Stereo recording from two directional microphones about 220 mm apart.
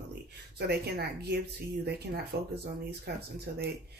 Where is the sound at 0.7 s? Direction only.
45° right (ahead or behind).